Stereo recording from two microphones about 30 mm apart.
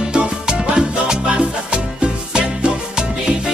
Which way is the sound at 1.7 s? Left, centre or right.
Right.